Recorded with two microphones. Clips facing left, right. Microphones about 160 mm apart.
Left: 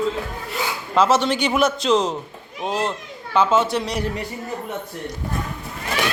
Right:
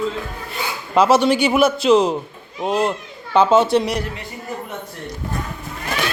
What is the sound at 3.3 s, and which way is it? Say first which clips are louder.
Speech: right 4 dB; 35° right (ahead or behind).